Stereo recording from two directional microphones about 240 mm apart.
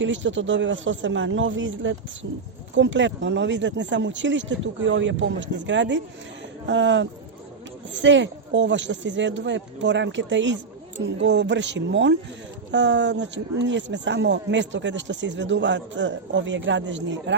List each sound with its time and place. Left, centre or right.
0.0 s speech: right